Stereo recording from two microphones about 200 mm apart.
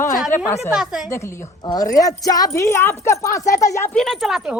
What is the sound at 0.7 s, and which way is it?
Speech, centre (ahead or behind).